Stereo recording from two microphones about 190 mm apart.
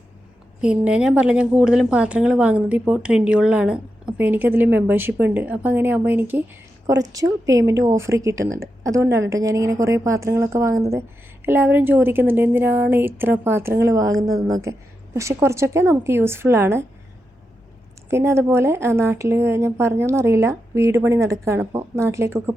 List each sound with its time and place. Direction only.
0.6 s a woman's voice: 5° right (ahead or behind)
18.1 s a woman's voice: 15° right (ahead or behind)